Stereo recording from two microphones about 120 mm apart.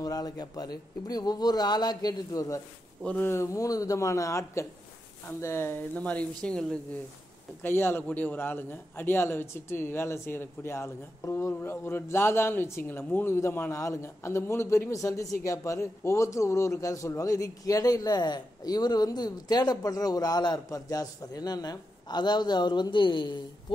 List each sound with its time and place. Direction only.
0.0 s a man's voice: 30° left (ahead or behind)
3.0 s speech: 10° left (ahead or behind)
3.3 s a man's voice: 25° left (ahead or behind); by 6.8 s 5° left (ahead or behind)
7.6 s a man's voice: 20° left (ahead or behind); by 23.3 s 40° left (ahead or behind)